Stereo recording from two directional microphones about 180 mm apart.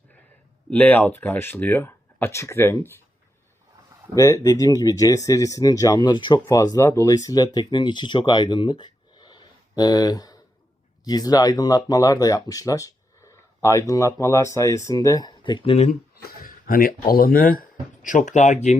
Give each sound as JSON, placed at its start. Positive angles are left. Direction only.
{"t": 0.7, "sound": "speech", "side_deg": 10}
{"t": 4.1, "sound": "speech", "side_deg": 15}
{"t": 16.2, "sound": "speech", "side_deg": 50}